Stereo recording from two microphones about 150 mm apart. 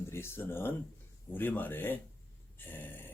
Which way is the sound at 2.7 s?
15° left (ahead or behind).